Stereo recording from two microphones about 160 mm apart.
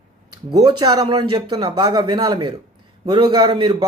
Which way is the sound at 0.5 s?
25° right (ahead or behind).